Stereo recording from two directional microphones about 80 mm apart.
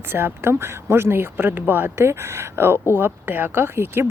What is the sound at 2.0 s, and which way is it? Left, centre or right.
Speech, right.